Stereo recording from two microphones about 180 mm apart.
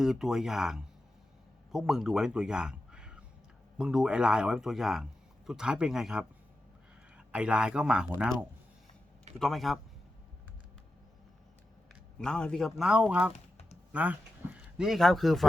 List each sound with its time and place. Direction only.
0.0 s a man's voice: centre (ahead or behind)
9.4 s speech: centre (ahead or behind)
12.2 s speech: 5° left (ahead or behind)
13.3 s typing: 40° left (ahead or behind)
13.9 s a man's voice: 10° right (ahead or behind)